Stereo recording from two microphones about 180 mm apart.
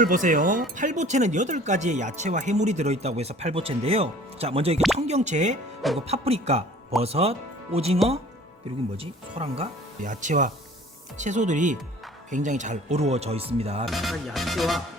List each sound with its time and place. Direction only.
0.0 s speech: 45° right (ahead or behind)
9.0 s speech: 35° right (ahead or behind)
10.1 s speech: 45° right (ahead or behind)
13.8 s music: centre (ahead or behind)